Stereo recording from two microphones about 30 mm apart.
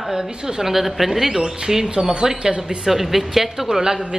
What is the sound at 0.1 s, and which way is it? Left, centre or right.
A woman's voice, centre.